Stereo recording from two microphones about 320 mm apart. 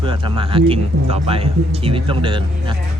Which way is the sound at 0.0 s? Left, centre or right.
Centre.